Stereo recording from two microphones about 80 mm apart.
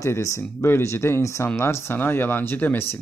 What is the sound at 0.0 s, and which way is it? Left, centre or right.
Speech, left.